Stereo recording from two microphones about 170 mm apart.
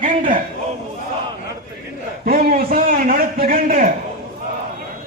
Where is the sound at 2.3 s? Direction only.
60° right (ahead or behind).